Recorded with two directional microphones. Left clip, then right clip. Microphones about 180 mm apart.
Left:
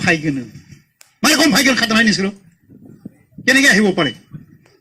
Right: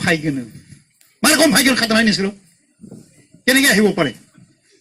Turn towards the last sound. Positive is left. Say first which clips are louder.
# left 2 dB
turn(degrees=-30)  # may be behind; listen again after turning